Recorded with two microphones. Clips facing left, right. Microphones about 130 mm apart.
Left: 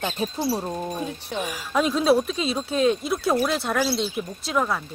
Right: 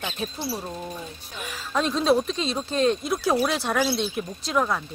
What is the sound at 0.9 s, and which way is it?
Speech, 60° left (ahead or behind).